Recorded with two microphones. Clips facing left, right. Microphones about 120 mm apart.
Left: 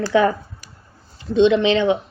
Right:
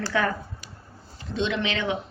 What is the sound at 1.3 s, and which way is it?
Speech, 20° left (ahead or behind).